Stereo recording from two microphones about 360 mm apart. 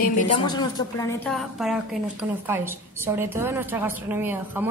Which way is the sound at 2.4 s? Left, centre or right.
Centre.